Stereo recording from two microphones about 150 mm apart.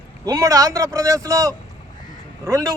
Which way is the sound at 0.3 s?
25° right (ahead or behind).